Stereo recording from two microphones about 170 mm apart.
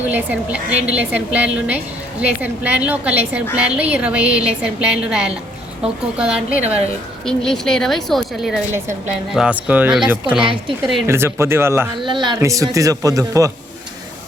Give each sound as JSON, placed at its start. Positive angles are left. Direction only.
{"t": 0.0, "sound": "a woman's voice", "side_deg": -10}
{"t": 10.4, "sound": "speech", "side_deg": -30}
{"t": 11.0, "sound": "a woman's voice", "side_deg": -15}
{"t": 12.0, "sound": "a man's voice", "side_deg": -25}